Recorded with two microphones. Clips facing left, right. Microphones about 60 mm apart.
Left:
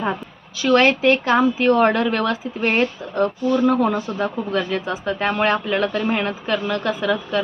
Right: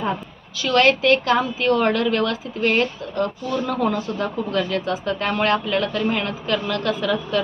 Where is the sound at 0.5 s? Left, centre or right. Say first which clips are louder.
Left 2 dB; left.